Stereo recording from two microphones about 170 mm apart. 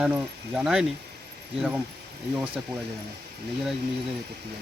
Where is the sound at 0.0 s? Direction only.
5° right (ahead or behind).